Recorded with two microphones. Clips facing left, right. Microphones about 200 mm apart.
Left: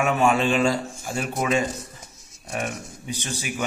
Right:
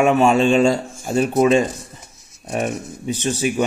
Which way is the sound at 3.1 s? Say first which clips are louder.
Right 11 dB; 15° left (ahead or behind).